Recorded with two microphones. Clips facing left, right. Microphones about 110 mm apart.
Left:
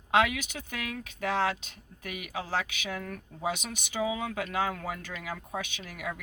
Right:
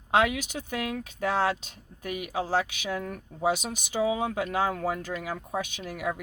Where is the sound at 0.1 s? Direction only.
35° right (ahead or behind).